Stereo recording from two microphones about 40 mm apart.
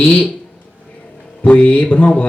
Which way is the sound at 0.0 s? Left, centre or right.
Left.